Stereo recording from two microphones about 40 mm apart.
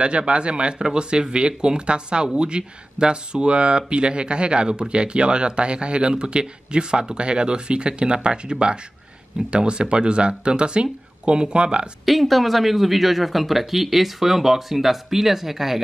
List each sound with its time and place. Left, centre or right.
0.0 s speech: right
12.1 s speech: centre